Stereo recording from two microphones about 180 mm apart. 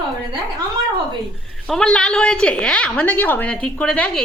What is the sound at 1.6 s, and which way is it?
A woman's voice, 5° left (ahead or behind).